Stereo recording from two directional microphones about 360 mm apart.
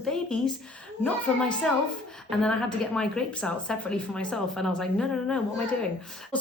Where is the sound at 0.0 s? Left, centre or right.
Centre.